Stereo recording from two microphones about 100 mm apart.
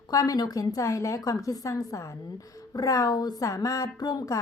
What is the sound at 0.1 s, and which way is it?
A woman's voice, 40° left (ahead or behind).